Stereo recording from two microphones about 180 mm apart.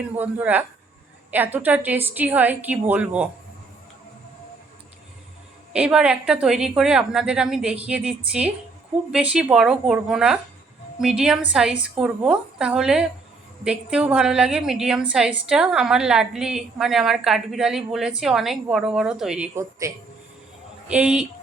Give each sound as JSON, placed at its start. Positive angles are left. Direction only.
{"t": 0.2, "sound": "a woman's voice", "side_deg": -10}
{"t": 5.7, "sound": "a woman's voice", "side_deg": -5}
{"t": 19.8, "sound": "a woman's voice", "side_deg": -15}